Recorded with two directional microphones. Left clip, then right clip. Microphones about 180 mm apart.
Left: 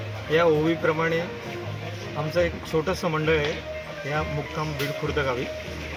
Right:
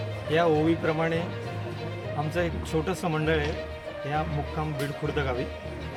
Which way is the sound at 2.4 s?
25° right (ahead or behind).